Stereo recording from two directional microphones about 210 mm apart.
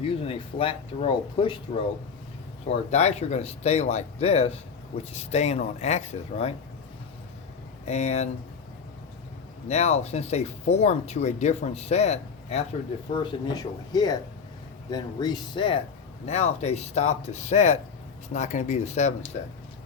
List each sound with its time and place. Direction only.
0.2 s speech: 25° left (ahead or behind)
2.6 s speech: 30° left (ahead or behind)
7.9 s speech: 30° left (ahead or behind)
9.6 s speech: 30° left (ahead or behind)
13.1 s speech: 20° left (ahead or behind)